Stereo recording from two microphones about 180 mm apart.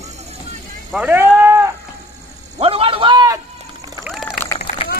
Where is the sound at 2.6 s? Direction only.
30° right (ahead or behind).